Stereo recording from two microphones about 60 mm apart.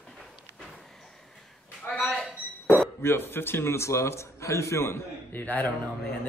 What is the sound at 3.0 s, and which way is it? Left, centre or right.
A man's voice, left.